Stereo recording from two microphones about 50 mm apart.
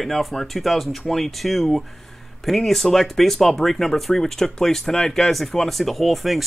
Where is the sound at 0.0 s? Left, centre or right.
Centre.